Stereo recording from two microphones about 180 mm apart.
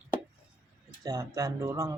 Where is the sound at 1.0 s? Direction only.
20° right (ahead or behind).